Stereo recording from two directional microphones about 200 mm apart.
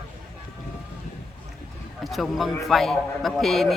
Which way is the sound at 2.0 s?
Centre (ahead or behind).